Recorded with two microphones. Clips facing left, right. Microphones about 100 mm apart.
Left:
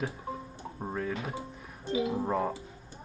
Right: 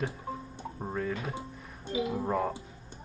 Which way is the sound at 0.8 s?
5° left (ahead or behind).